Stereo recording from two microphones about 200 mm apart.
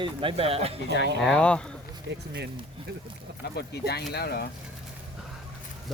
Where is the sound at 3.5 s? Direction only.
55° left (ahead or behind).